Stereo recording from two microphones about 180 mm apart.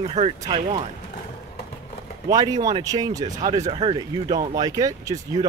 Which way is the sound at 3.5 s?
40° right (ahead or behind).